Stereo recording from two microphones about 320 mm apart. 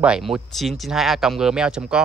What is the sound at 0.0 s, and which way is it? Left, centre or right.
Speech, centre.